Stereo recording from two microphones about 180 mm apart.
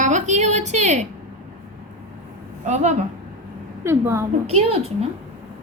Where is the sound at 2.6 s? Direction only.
40° right (ahead or behind).